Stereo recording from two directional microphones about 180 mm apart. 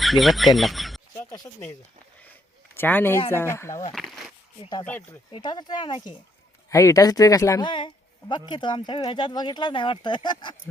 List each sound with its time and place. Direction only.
0.0 s speech: centre (ahead or behind)
2.7 s speech: 10° left (ahead or behind)
3.9 s a sound: centre (ahead or behind)
4.8 s speech: 10° left (ahead or behind)
5.3 s speech: 25° left (ahead or behind)